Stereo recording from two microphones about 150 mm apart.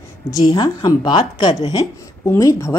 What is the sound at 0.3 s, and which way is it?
A woman's voice, 25° left (ahead or behind).